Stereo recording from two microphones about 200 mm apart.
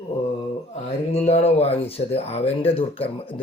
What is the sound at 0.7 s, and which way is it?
Speech, 30° left (ahead or behind).